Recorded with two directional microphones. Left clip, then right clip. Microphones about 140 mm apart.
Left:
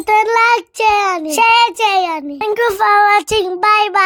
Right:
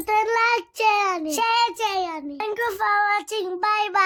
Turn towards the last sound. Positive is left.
turn(degrees=35)  # may be behind; listen again after turning